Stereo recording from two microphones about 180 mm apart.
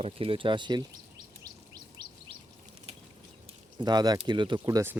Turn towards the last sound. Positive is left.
turn(degrees=-20)  # may be behind; listen again after turning